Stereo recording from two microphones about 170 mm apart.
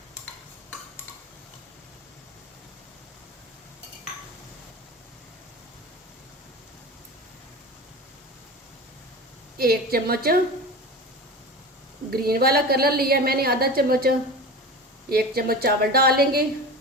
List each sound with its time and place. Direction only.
9.6 s a woman's voice: 65° right (ahead or behind)
12.1 s a woman's voice: 65° right (ahead or behind)
15.1 s a woman's voice: 65° right (ahead or behind)